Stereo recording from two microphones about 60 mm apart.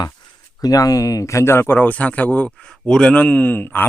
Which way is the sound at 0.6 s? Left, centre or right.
Left.